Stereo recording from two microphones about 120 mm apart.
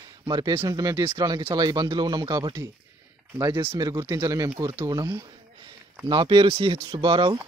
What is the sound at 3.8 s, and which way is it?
Speech, 30° right (ahead or behind).